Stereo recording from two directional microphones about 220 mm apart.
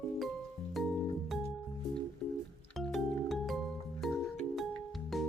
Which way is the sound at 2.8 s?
Centre (ahead or behind).